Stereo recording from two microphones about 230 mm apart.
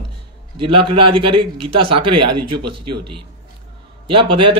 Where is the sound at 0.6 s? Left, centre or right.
Right.